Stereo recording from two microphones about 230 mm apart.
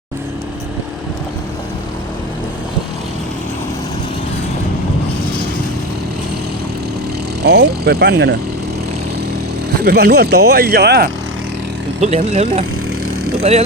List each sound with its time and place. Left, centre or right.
7.4 s speech: right
9.8 s speech: right
11.9 s speech: right